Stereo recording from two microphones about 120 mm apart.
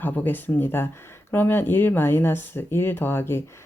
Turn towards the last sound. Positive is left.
turn(degrees=20)  # may be behind; listen again after turning